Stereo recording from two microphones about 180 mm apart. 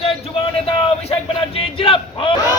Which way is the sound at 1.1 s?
30° left (ahead or behind).